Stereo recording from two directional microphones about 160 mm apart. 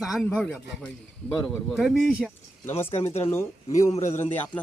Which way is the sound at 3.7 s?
45° left (ahead or behind).